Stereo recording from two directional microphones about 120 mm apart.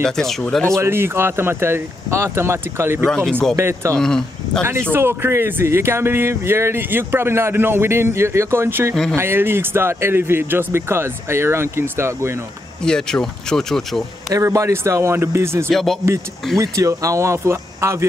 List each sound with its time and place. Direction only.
0.0 s speech: 5° left (ahead or behind)
0.7 s speech: 20° right (ahead or behind)
3.3 s speech: 5° left (ahead or behind)
3.5 s speech: 20° right (ahead or behind)
4.0 s speech: 5° left (ahead or behind)
4.9 s speech: 20° right (ahead or behind)
12.8 s speech: 5° left (ahead or behind)
14.3 s speech: 25° right (ahead or behind)
15.7 s speech: centre (ahead or behind)
16.5 s speech: 30° right (ahead or behind)